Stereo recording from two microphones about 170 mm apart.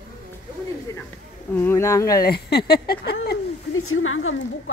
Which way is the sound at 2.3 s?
70° left (ahead or behind).